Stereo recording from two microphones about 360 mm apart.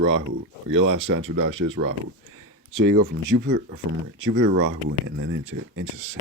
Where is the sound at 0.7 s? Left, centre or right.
Right.